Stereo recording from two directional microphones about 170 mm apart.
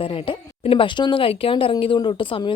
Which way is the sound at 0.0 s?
30° left (ahead or behind).